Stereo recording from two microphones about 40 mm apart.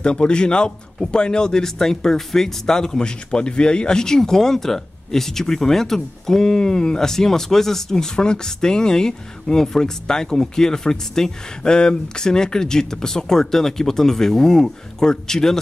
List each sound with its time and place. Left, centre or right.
0.0 s a man's voice: left